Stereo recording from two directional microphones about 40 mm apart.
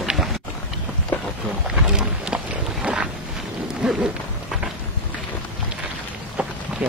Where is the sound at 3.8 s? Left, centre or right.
Centre.